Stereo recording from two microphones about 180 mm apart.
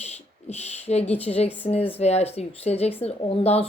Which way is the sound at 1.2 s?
35° left (ahead or behind).